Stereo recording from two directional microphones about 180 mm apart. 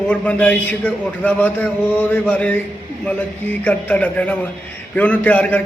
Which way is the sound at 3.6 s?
5° left (ahead or behind).